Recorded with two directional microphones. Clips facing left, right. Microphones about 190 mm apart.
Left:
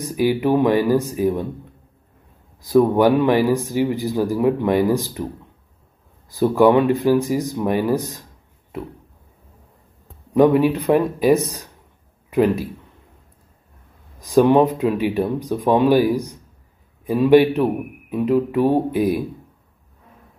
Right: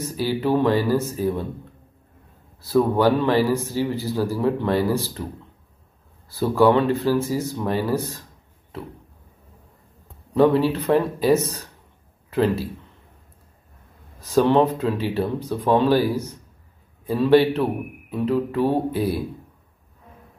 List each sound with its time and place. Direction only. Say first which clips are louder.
0.0 s speech: left 5 dB; 15° left (ahead or behind)
2.6 s speech: left 4 dB; 15° left (ahead or behind)
6.3 s speech: left 3 dB; 15° left (ahead or behind)
10.3 s speech: left 3 dB; 15° left (ahead or behind)
14.2 s speech: left 3 dB; 15° left (ahead or behind)